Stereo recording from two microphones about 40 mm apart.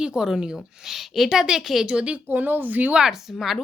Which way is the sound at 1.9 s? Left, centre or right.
Right.